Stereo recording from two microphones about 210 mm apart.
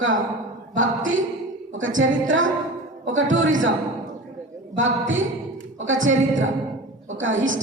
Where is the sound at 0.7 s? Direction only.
70° right (ahead or behind).